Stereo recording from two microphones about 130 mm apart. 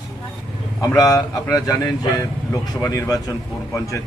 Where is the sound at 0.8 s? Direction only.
25° left (ahead or behind).